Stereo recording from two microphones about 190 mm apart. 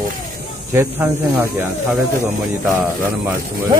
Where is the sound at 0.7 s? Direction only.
15° right (ahead or behind).